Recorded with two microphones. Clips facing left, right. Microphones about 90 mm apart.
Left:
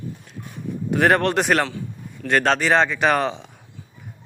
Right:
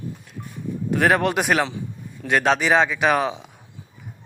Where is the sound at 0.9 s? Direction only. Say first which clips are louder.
Left 1 dB; centre (ahead or behind).